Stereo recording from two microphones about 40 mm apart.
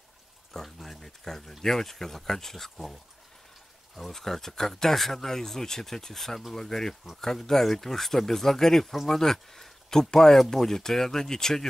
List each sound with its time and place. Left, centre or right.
0.5 s speech: centre
4.1 s speech: centre